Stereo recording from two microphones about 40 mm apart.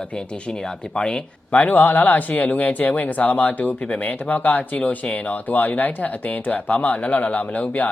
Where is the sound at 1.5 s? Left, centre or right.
Left.